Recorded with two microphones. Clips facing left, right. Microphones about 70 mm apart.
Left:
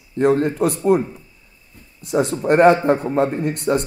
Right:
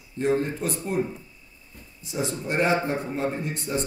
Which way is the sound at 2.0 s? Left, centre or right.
Left.